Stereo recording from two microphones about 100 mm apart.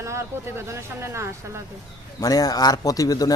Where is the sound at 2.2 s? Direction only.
40° left (ahead or behind).